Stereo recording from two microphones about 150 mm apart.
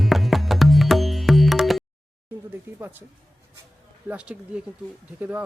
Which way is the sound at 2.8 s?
15° right (ahead or behind).